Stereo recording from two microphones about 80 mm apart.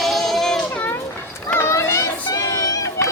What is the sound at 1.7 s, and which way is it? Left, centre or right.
Children playing, left.